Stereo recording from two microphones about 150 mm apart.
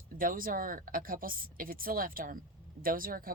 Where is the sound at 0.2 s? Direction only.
70° right (ahead or behind).